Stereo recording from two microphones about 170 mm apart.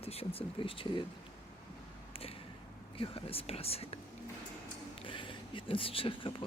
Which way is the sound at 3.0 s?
35° left (ahead or behind).